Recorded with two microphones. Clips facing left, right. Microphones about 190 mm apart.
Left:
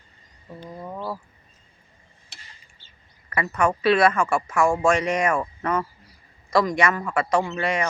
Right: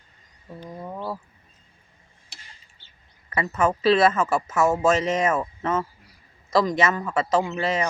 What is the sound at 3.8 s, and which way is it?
Speech, 25° right (ahead or behind).